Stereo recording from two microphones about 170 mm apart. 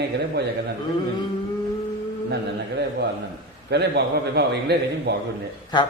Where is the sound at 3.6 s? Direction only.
75° right (ahead or behind).